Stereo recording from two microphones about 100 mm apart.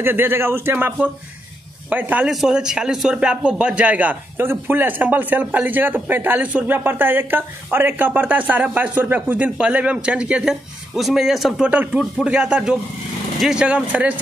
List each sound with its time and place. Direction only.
0.0 s a man's voice: 20° right (ahead or behind)
2.2 s a man's voice: 5° right (ahead or behind)
11.7 s a man's voice: 15° right (ahead or behind)